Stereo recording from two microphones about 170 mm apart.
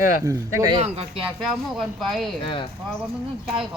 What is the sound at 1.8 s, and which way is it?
Speech, centre (ahead or behind).